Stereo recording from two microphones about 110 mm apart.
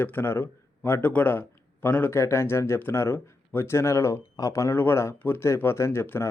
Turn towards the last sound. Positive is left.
turn(degrees=20)  # may be behind; listen again after turning